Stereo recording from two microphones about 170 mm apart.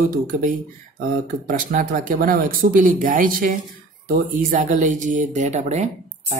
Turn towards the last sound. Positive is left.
turn(degrees=-40)  # may be behind; listen again after turning